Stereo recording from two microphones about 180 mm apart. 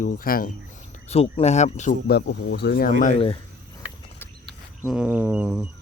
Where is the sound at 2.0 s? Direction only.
65° left (ahead or behind).